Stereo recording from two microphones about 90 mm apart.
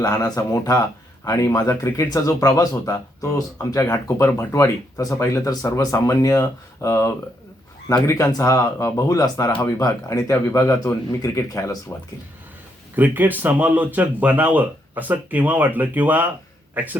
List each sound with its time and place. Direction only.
0.0 s speech: 45° left (ahead or behind)
13.0 s speech: 20° right (ahead or behind)